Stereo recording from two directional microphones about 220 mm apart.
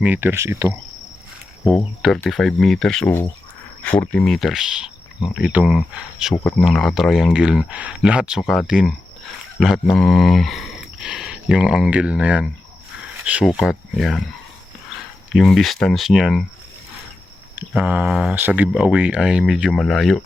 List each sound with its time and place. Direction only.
0.0 s speech: 10° right (ahead or behind)
1.6 s speech: centre (ahead or behind)
15.3 s speech: centre (ahead or behind)
17.5 s speech: 5° right (ahead or behind)